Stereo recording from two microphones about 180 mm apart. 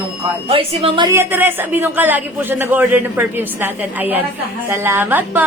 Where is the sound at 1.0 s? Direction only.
10° right (ahead or behind).